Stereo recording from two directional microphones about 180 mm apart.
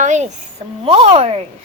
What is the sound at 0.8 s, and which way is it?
Speech, 30° right (ahead or behind).